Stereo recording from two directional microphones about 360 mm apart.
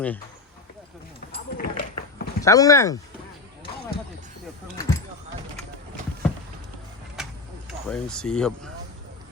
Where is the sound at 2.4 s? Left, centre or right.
Centre.